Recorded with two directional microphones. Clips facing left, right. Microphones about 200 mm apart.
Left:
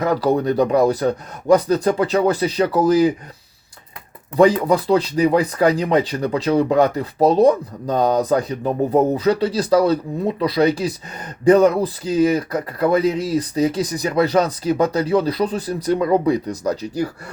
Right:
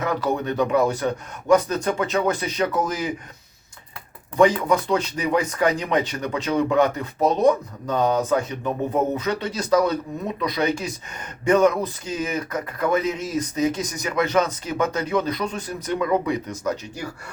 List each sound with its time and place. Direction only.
0.0 s speech: 35° left (ahead or behind)
4.4 s speech: 35° left (ahead or behind)